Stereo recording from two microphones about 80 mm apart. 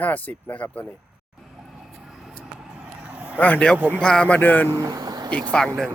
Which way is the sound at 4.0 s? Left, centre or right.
Centre.